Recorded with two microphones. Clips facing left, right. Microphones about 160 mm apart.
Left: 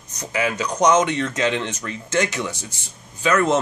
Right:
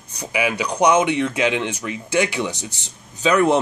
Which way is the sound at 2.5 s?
70° right (ahead or behind).